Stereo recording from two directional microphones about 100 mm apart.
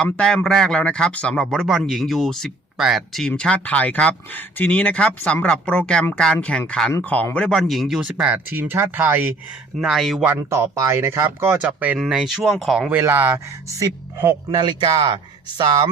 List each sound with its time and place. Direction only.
0.0 s a man's voice: 10° left (ahead or behind)
7.7 s speech: centre (ahead or behind); by 9.3 s 20° right (ahead or behind)
9.8 s speech: centre (ahead or behind)
10.2 s speech: 25° right (ahead or behind)
11.9 s speech: 5° right (ahead or behind)
13.0 s speech: 25° right (ahead or behind)
14.3 s a man's voice: 45° right (ahead or behind)